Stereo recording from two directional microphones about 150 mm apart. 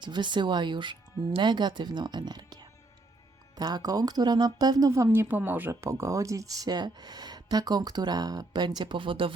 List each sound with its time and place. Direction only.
0.0 s speech: 30° right (ahead or behind)